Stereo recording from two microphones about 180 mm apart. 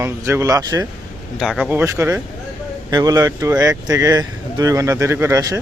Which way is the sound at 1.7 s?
15° right (ahead or behind).